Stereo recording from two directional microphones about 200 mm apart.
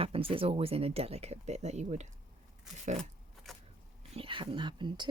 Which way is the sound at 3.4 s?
Centre (ahead or behind).